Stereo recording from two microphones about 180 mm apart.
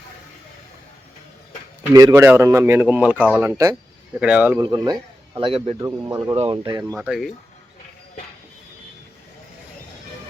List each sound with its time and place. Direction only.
1.9 s a man's voice: 20° right (ahead or behind)
5.8 s a man's voice: 20° right (ahead or behind)
6.3 s speech: 35° right (ahead or behind)
6.6 s a man's voice: 20° right (ahead or behind)
6.9 s speech: 5° right (ahead or behind)